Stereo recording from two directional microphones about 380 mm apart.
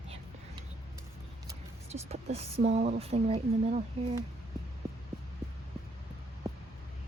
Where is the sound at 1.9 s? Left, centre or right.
Centre.